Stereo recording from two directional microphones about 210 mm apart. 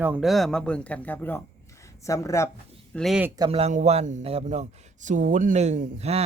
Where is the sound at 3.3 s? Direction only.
25° right (ahead or behind).